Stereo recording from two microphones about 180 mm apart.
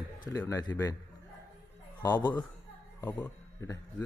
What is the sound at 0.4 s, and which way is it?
Speech, 20° left (ahead or behind).